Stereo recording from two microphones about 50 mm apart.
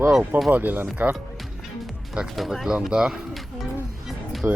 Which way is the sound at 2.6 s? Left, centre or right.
Centre.